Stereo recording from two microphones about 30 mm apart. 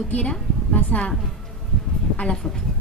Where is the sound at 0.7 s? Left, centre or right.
Left.